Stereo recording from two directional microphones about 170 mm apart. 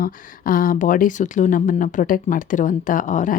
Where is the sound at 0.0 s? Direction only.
55° left (ahead or behind).